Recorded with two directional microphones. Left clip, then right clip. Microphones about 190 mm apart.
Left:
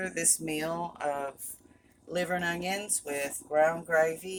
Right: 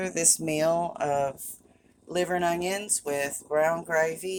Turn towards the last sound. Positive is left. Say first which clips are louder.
# right 1 dB
turn(degrees=-40)  # may be behind; listen again after turning